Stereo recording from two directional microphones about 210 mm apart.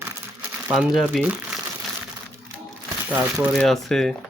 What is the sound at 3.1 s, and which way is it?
Speech, 10° right (ahead or behind).